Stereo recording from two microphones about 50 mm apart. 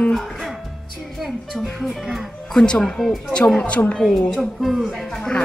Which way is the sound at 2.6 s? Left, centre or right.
Centre.